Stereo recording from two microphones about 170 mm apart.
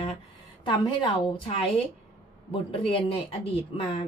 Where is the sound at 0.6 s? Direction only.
30° left (ahead or behind).